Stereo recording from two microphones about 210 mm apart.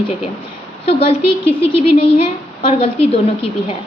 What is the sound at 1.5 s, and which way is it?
A woman's voice, 25° left (ahead or behind).